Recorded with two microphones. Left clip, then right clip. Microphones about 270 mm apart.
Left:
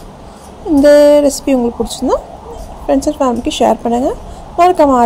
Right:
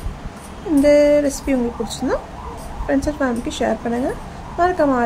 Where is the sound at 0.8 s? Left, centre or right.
Left.